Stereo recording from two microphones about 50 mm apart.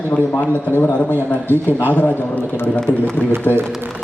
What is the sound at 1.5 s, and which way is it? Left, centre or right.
Speech, left.